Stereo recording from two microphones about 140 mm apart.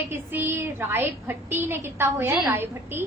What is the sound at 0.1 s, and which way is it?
A woman's voice, 15° right (ahead or behind).